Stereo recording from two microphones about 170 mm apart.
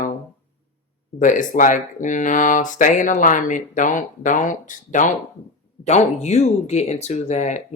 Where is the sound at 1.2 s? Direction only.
50° left (ahead or behind).